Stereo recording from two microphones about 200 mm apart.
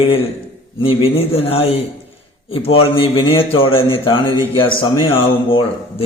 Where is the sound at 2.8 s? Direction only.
30° left (ahead or behind).